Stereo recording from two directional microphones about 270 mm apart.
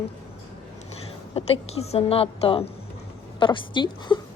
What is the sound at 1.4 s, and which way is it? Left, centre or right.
A woman's voice, left.